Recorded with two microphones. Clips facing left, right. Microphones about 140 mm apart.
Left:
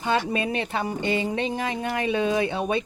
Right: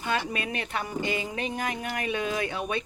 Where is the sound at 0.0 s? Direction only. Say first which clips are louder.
Left 5 dB; 25° left (ahead or behind).